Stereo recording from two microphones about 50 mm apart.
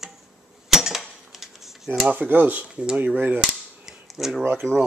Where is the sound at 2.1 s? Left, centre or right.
Right.